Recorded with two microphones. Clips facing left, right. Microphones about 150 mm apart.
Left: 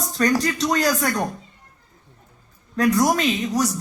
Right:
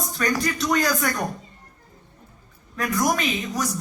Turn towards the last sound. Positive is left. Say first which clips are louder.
# left 5 dB
turn(degrees=35)  # may be behind; listen again after turning